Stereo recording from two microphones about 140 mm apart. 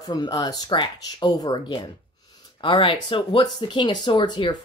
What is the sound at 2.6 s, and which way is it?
Speech, 40° left (ahead or behind).